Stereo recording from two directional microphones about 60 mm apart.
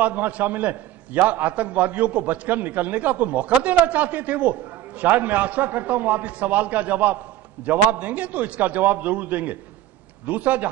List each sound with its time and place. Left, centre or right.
0.0 s a man's voice: right